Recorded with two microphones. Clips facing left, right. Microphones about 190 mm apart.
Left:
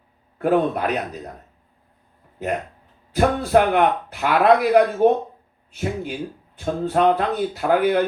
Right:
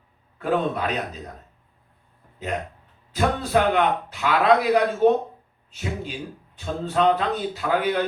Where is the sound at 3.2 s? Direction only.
55° left (ahead or behind).